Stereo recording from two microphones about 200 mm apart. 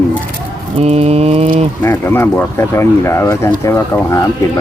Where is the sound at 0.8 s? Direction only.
30° right (ahead or behind).